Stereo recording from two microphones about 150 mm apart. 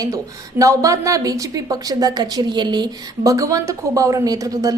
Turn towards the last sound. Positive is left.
turn(degrees=-25)  # may be behind; listen again after turning